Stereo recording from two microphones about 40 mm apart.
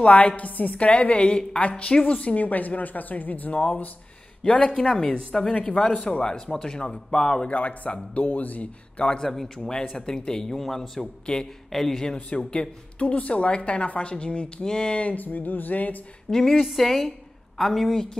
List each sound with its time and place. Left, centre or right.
0.0 s a woman's voice: left
4.4 s a woman's voice: left
7.5 s a woman's voice: left
9.2 s speech: centre
11.0 s a woman's voice: left
11.7 s speech: centre
12.4 s a woman's voice: left
15.1 s speech: left
16.3 s speech: centre